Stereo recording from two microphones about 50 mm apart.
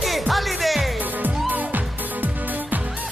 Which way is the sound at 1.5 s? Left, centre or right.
Right.